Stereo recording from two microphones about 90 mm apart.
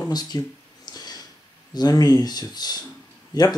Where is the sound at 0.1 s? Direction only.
50° left (ahead or behind).